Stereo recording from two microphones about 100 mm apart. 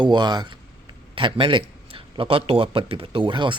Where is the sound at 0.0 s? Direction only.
45° right (ahead or behind).